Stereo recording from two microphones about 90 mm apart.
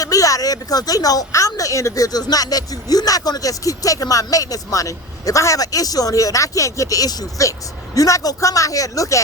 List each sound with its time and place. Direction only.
0.0 s speech: 40° left (ahead or behind)